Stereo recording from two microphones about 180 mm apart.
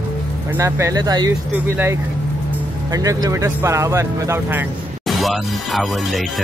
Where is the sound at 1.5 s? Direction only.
10° right (ahead or behind).